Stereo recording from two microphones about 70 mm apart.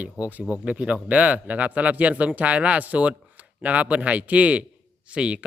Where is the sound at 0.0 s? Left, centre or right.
Right.